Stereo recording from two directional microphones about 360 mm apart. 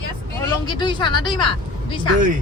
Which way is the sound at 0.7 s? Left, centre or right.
Centre.